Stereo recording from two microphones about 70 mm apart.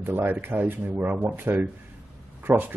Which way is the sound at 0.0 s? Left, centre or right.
Right.